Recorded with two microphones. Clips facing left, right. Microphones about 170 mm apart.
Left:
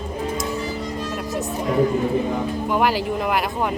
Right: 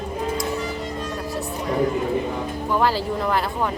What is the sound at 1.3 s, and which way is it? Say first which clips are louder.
Music: left 2 dB; 45° left (ahead or behind).